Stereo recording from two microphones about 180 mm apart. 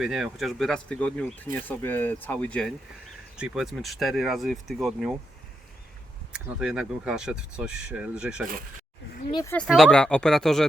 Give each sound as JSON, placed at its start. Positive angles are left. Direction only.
{"t": 0.0, "sound": "speech", "side_deg": 0}
{"t": 6.3, "sound": "speech", "side_deg": -5}
{"t": 9.3, "sound": "speech", "side_deg": 20}
{"t": 9.6, "sound": "speech", "side_deg": 0}